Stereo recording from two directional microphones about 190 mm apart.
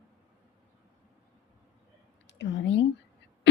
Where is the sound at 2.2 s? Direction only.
70° left (ahead or behind).